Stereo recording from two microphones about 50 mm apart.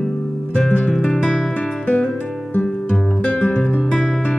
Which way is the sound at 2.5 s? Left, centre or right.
Left.